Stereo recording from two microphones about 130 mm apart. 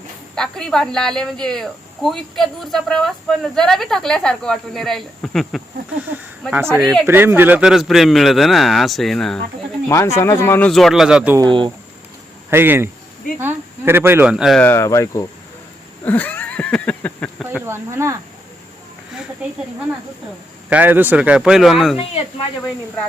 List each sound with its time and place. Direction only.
0.3 s a woman's voice: 5° left (ahead or behind)
6.5 s speech: 20° right (ahead or behind)
6.7 s a woman's voice: centre (ahead or behind)
7.1 s a woman's voice: 15° right (ahead or behind); by 9.4 s 5° left (ahead or behind)
9.9 s speech: 20° left (ahead or behind)
10.7 s a woman's voice: centre (ahead or behind)
11.3 s speech: 35° right (ahead or behind)
12.5 s speech: 15° right (ahead or behind)
14.3 s a woman's voice: 5° right (ahead or behind)
14.6 s speech: 20° left (ahead or behind)
16.0 s cat: 15° left (ahead or behind)
17.7 s speech: 20° right (ahead or behind)
20.7 s speech: 10° right (ahead or behind)
21.9 s speech: 50° left (ahead or behind)